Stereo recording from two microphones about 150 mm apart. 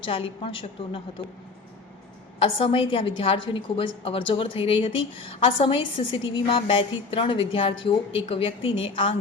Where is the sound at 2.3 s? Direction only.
35° left (ahead or behind).